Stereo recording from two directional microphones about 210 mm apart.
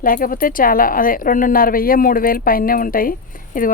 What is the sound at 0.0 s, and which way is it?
Speech, 40° left (ahead or behind).